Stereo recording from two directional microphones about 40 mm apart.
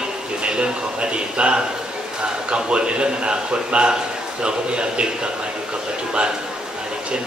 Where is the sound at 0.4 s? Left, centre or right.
Right.